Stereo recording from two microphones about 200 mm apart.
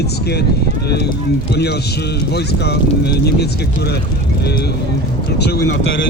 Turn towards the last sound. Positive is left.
turn(degrees=55)  # may be behind; listen again after turning